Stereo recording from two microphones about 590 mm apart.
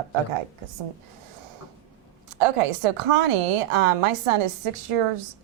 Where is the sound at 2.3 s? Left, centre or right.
Right.